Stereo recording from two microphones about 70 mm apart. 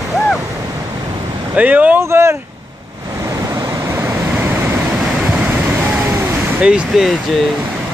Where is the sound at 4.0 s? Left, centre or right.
Right.